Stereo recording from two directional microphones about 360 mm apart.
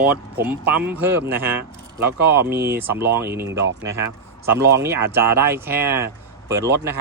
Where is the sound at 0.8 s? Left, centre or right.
Centre.